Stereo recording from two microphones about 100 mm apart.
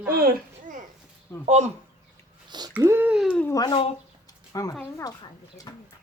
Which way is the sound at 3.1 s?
10° right (ahead or behind).